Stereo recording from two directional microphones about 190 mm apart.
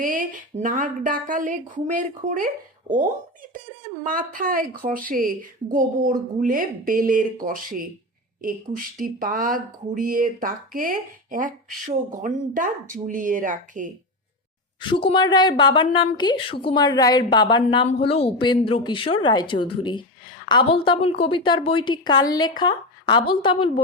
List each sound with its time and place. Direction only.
0.0 s a woman's voice: 45° right (ahead or behind)
4.0 s a woman's voice: 45° right (ahead or behind)
14.8 s speech: 25° left (ahead or behind)